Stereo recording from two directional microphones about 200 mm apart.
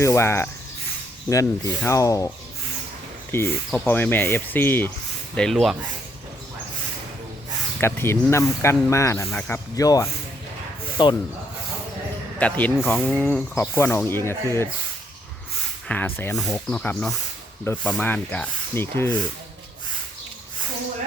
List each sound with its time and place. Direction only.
0.0 s speech: 15° left (ahead or behind)
3.3 s speech: 10° left (ahead or behind)
7.8 s speech: 10° left (ahead or behind)
12.4 s speech: 5° left (ahead or behind)
15.9 s speech: 10° left (ahead or behind)